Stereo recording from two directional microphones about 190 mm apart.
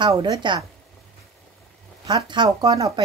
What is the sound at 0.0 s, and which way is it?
Speech, 20° right (ahead or behind).